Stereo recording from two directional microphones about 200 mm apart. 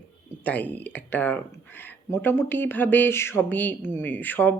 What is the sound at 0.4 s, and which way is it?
Speech, 10° left (ahead or behind).